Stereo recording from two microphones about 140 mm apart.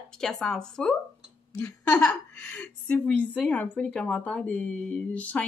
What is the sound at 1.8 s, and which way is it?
A woman's voice, 5° left (ahead or behind).